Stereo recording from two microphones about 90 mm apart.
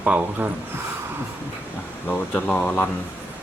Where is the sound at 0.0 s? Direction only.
20° right (ahead or behind).